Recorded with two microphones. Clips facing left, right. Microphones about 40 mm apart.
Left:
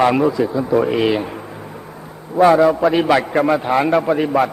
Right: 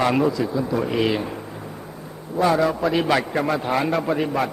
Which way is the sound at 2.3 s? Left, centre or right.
Left.